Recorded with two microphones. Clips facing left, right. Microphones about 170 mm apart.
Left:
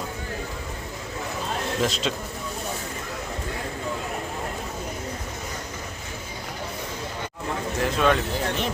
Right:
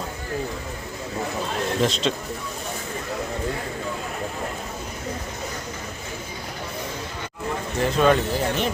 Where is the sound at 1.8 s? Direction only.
5° left (ahead or behind).